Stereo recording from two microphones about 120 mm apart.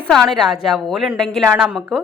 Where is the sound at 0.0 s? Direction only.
5° left (ahead or behind).